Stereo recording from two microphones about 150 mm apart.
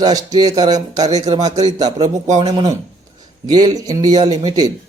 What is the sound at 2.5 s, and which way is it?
Speech, 25° right (ahead or behind).